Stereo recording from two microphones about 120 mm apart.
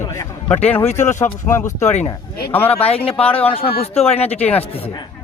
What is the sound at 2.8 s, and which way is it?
A man's voice, 55° left (ahead or behind).